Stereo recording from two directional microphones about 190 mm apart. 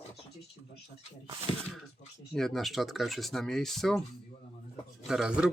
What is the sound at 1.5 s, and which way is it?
Speech, 30° left (ahead or behind).